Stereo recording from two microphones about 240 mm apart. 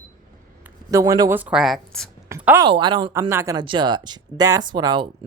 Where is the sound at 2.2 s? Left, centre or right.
Centre.